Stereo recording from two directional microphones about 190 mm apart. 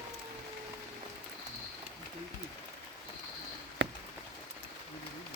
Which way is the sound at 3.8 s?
75° right (ahead or behind).